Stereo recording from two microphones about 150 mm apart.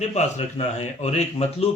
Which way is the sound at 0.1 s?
50° left (ahead or behind).